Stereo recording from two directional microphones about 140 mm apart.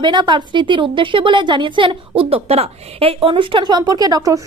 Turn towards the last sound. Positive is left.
turn(degrees=-25)  # may be behind; listen again after turning